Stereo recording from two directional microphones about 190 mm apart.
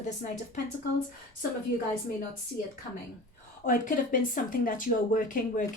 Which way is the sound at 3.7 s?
45° left (ahead or behind).